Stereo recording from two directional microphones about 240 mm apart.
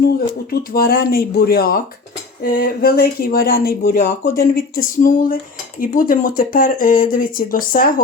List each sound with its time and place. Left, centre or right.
0.5 s speech: left